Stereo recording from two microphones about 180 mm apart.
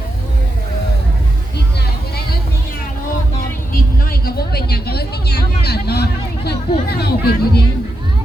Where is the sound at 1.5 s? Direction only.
60° left (ahead or behind).